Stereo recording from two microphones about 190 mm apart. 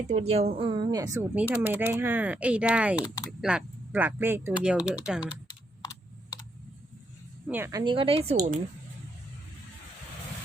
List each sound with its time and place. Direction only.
0.1 s speech: 35° right (ahead or behind); by 5.3 s 5° right (ahead or behind)
5.8 s computer keyboard: 20° left (ahead or behind)
7.4 s a woman's voice: 10° right (ahead or behind); by 8.4 s 30° right (ahead or behind)